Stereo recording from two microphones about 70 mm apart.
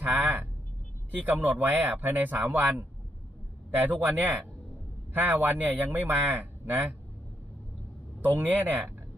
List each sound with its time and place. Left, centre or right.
0.0 s vehicle: right
1.2 s a man's voice: right
3.8 s a man's voice: right
8.2 s a man's voice: right